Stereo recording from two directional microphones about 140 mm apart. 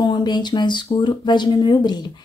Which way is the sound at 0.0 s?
30° left (ahead or behind).